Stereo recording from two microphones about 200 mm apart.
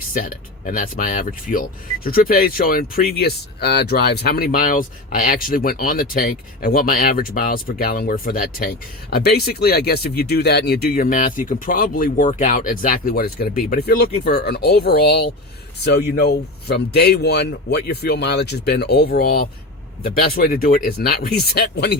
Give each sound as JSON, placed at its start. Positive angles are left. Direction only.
{"t": 0.1, "sound": "speech", "side_deg": 45}